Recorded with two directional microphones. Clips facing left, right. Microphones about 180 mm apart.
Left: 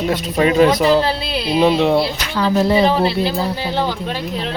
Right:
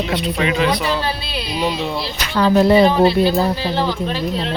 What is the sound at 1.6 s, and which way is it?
Speech, 65° left (ahead or behind).